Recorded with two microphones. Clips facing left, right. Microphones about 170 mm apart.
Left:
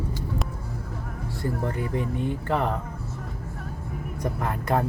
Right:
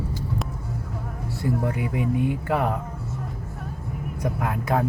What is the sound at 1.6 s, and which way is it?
Speech, 10° right (ahead or behind).